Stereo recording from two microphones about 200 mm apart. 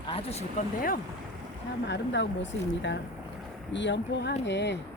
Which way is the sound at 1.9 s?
60° left (ahead or behind).